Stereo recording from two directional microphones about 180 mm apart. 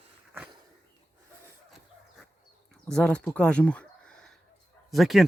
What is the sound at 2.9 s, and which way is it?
Speech, 5° left (ahead or behind).